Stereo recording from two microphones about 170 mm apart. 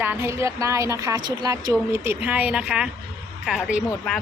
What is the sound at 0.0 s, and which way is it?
A woman's voice, 15° right (ahead or behind).